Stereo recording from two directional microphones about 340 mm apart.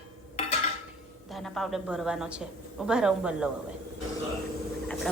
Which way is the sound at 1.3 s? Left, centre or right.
Centre.